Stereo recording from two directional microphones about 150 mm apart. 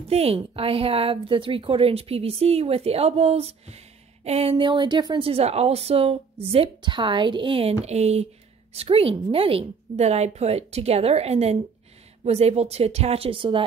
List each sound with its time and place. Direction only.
0.1 s a woman's voice: 45° right (ahead or behind)
7.8 s a woman's voice: 45° right (ahead or behind)